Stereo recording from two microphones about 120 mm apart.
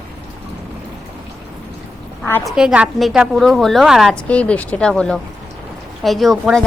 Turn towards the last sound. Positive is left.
turn(degrees=0)  # may be behind; listen again after turning